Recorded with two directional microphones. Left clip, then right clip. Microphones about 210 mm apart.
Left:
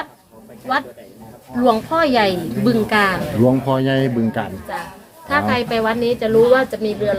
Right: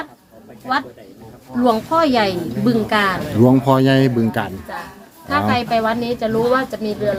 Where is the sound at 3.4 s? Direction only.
30° right (ahead or behind).